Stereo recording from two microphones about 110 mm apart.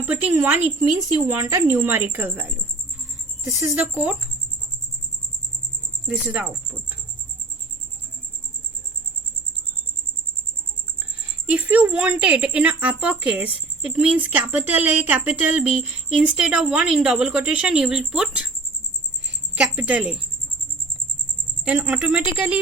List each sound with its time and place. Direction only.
0.0 s a woman's voice: 15° right (ahead or behind)
1.0 s speech: 30° right (ahead or behind)
1.8 s a woman's voice: 15° right (ahead or behind)
3.9 s a woman's voice: 10° right (ahead or behind)
6.1 s a woman's voice: 10° right (ahead or behind)
11.4 s a woman's voice: 15° right (ahead or behind)
19.5 s a woman's voice: 10° right (ahead or behind)
21.6 s a woman's voice: 10° right (ahead or behind)